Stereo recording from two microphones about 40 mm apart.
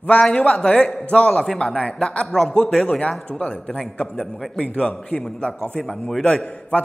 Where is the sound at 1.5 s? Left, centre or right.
Centre.